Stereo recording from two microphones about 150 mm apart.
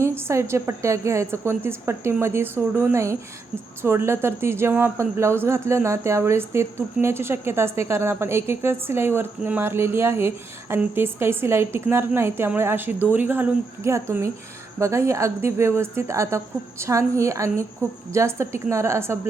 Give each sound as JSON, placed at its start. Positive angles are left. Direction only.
{"t": 0.0, "sound": "a woman's voice", "side_deg": -15}